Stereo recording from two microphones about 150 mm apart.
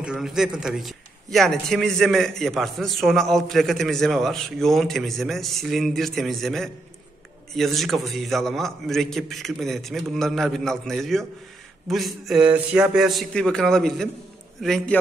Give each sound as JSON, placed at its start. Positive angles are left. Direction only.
{"t": 0.0, "sound": "a man's voice", "side_deg": -5}